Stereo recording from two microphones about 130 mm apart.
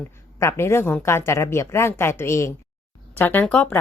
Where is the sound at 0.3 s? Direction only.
20° left (ahead or behind).